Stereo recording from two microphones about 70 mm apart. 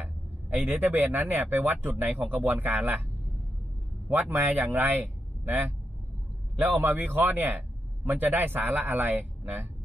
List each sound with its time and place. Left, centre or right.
0.0 s speech: right
4.1 s speech: right